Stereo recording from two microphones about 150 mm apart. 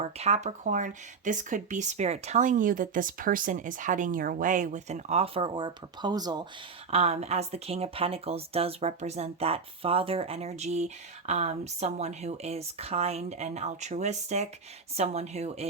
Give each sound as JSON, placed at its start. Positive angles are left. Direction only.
{"t": 0.0, "sound": "speech", "side_deg": -45}
{"t": 6.9, "sound": "speech", "side_deg": -45}